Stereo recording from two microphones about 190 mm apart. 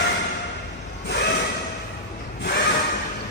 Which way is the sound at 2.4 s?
65° left (ahead or behind).